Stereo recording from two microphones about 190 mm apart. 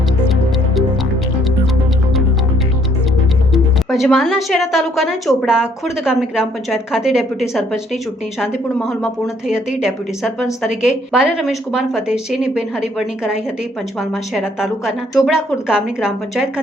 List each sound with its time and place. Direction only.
4.1 s speech: centre (ahead or behind)